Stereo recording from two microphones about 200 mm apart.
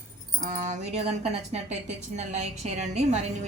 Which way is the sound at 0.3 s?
40° right (ahead or behind).